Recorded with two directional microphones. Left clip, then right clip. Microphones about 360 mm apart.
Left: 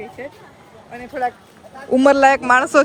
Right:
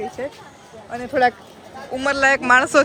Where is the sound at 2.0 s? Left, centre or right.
Centre.